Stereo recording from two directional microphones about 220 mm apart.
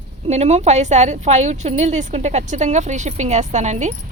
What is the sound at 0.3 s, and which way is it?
Speech, 30° right (ahead or behind).